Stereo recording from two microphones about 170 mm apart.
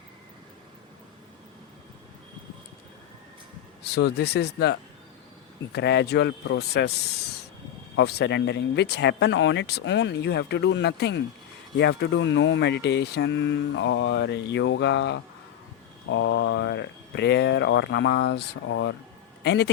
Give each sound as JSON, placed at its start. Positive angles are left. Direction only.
{"t": 3.8, "sound": "speech", "side_deg": 75}